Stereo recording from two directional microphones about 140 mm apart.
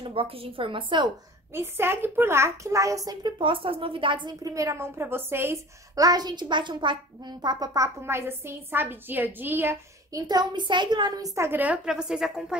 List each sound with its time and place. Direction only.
0.0 s a woman's voice: 40° right (ahead or behind)
1.5 s a child's voice: 15° right (ahead or behind)
10.1 s a child's voice: 30° right (ahead or behind); by 12.5 s 5° right (ahead or behind)